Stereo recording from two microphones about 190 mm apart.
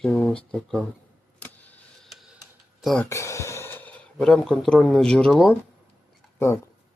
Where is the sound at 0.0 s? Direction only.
5° left (ahead or behind).